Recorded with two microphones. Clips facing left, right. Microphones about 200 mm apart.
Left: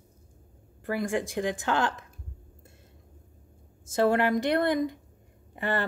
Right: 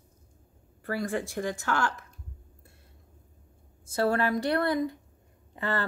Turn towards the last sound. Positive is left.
turn(degrees=15)  # may be behind; listen again after turning